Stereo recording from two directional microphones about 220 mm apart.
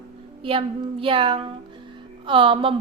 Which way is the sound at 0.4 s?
25° right (ahead or behind).